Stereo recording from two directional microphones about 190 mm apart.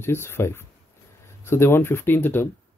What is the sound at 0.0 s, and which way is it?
Speech, 15° left (ahead or behind).